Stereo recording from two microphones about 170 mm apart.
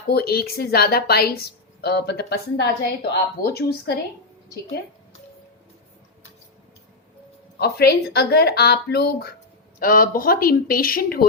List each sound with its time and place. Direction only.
0.1 s a woman's voice: 65° left (ahead or behind)
7.6 s a woman's voice: 70° left (ahead or behind)
9.8 s speech: 55° left (ahead or behind)